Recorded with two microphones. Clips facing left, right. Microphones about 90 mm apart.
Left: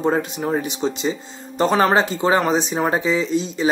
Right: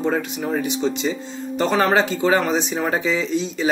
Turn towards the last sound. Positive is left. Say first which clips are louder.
# left 1 dB
turn(degrees=25)  # may be behind; listen again after turning